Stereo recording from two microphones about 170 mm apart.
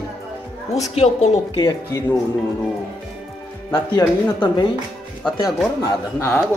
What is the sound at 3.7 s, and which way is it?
Speech, 25° left (ahead or behind).